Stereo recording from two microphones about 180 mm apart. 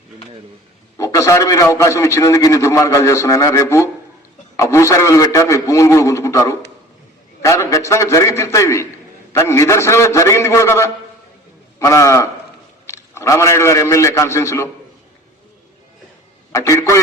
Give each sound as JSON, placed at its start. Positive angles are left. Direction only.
{"t": 0.9, "sound": "a man's voice", "side_deg": 15}
{"t": 16.5, "sound": "a man's voice", "side_deg": 15}